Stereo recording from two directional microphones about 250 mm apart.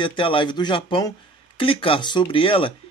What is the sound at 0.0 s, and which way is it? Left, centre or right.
Speech, centre.